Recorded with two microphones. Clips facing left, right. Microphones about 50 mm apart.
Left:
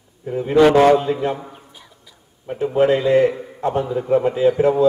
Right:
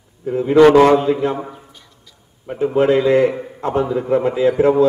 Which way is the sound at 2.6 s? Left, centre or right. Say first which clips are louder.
Right 2 dB; right.